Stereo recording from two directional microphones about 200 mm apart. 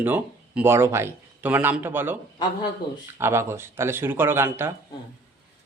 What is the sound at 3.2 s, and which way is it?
A man's voice, 10° right (ahead or behind).